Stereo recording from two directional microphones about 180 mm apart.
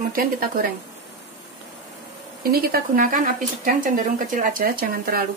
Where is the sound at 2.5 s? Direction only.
55° right (ahead or behind).